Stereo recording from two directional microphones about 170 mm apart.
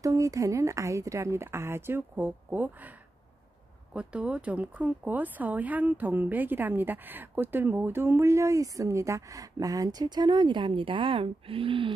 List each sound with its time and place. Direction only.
0.0 s speech: 20° right (ahead or behind)